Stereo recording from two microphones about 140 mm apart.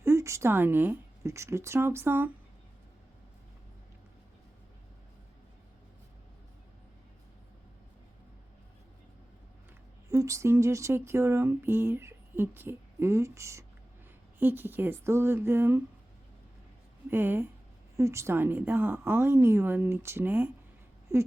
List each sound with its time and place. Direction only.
0.0 s speech: 20° right (ahead or behind)
10.1 s a woman's voice: 20° right (ahead or behind)
17.1 s a woman's voice: 15° right (ahead or behind)